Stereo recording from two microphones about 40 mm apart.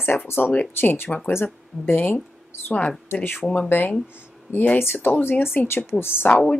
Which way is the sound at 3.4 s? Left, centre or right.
Left.